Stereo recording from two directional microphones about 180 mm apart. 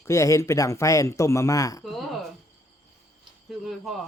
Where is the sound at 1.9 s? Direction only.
Centre (ahead or behind).